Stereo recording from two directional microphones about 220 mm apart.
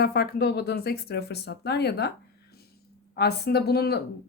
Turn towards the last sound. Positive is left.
turn(degrees=45)  # may be behind; listen again after turning